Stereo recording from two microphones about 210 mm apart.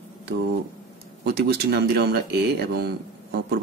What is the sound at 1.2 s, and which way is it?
Speech, 50° right (ahead or behind).